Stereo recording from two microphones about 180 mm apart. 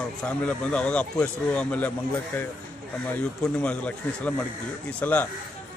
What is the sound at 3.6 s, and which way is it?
A man's voice, 10° left (ahead or behind).